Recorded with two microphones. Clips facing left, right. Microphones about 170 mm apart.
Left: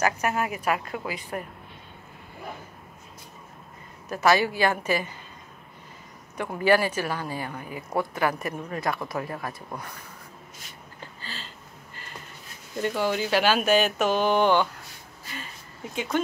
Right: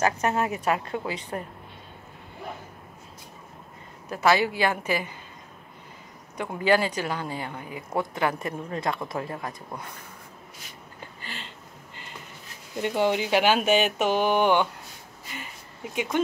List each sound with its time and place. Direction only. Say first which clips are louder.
0.0 s speech: right 1 dB; 25° right (ahead or behind)
4.1 s speech: even; 15° right (ahead or behind)
6.3 s speech: left 1 dB; 15° right (ahead or behind)
11.0 s a sound: even; 20° right (ahead or behind)
12.8 s speech: right 2 dB; 20° right (ahead or behind)
15.9 s speech: even; 15° right (ahead or behind)